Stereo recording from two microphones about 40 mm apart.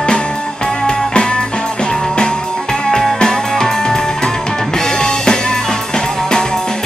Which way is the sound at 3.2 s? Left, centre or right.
Centre.